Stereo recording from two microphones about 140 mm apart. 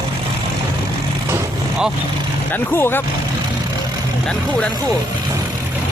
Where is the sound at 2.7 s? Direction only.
15° left (ahead or behind).